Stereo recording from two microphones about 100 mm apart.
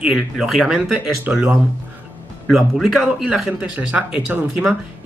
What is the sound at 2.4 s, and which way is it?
Speech, 5° right (ahead or behind).